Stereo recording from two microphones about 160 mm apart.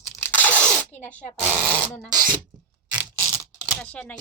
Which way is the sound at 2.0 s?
25° right (ahead or behind).